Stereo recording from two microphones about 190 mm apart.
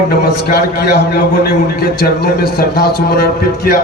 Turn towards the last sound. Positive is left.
turn(degrees=55)  # may be behind; listen again after turning